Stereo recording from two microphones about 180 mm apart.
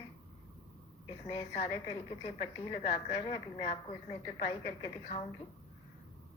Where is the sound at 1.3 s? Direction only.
35° left (ahead or behind).